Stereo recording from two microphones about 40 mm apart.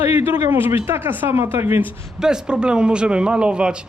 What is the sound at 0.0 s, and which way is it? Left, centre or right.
Speech, right.